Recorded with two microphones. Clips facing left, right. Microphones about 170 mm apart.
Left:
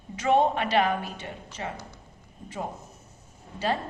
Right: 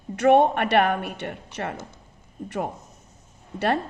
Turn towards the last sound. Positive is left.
turn(degrees=-65)  # may be behind; listen again after turning